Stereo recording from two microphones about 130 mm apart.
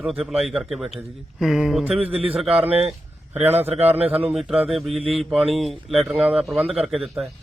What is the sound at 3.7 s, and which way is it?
Speech, 50° right (ahead or behind).